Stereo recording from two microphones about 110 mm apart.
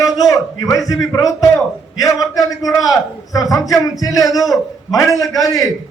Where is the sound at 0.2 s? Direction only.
30° left (ahead or behind).